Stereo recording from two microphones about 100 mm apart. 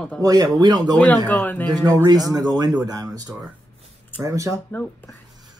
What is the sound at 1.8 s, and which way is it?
Speech, 40° right (ahead or behind).